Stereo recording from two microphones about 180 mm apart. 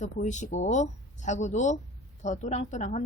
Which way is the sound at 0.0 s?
40° left (ahead or behind).